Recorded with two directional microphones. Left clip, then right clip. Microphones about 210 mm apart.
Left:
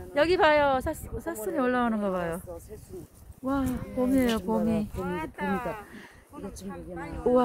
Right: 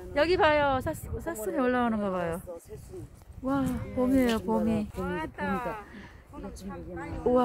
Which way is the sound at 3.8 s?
35° left (ahead or behind).